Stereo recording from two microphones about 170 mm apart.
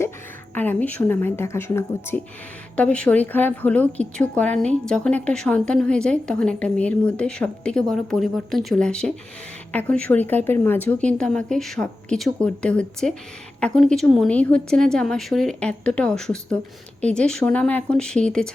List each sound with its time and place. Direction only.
0.5 s a woman's voice: 10° left (ahead or behind)